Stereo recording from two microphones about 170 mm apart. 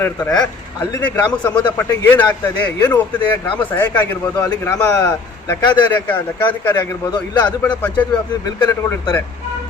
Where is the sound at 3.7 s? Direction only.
10° left (ahead or behind).